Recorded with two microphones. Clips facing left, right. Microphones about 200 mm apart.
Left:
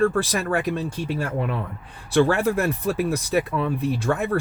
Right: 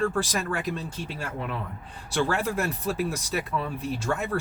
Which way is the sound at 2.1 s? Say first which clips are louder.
Left 7 dB; 55° left (ahead or behind).